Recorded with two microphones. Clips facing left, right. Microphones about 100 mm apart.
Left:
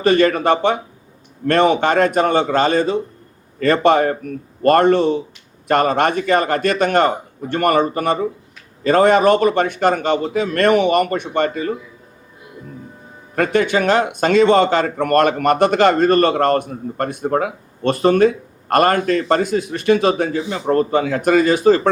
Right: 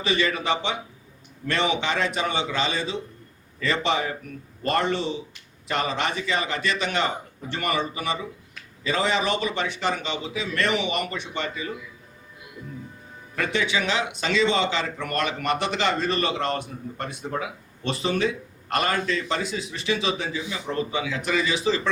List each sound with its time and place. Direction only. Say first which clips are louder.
0.0 s a man's voice: left 11 dB; 50° left (ahead or behind)
13.3 s a man's voice: left 9 dB; 50° left (ahead or behind)